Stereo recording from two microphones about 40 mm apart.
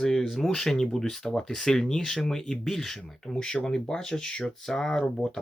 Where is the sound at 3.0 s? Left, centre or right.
Centre.